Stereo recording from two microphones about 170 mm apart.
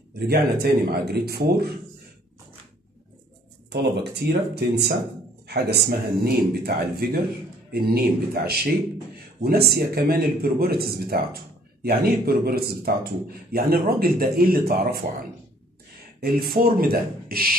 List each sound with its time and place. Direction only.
0.3 s speech: 70° right (ahead or behind)
3.7 s speech: 75° right (ahead or behind)
16.2 s speech: 65° right (ahead or behind)